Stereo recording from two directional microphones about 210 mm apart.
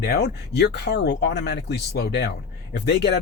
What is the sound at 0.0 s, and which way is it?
Speech, 50° left (ahead or behind).